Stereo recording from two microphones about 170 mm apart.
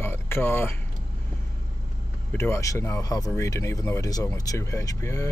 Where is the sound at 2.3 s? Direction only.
15° left (ahead or behind).